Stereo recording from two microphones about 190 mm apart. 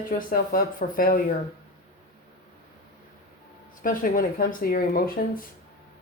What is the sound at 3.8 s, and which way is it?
Speech, 45° left (ahead or behind).